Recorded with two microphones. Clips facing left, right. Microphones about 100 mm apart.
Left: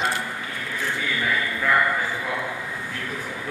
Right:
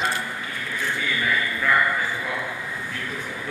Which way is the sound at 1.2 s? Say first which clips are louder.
Even; 30° left (ahead or behind).